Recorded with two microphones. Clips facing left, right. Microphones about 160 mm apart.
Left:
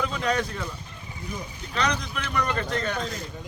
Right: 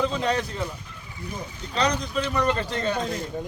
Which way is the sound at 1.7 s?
30° right (ahead or behind).